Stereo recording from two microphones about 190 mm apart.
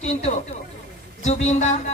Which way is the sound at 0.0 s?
35° left (ahead or behind).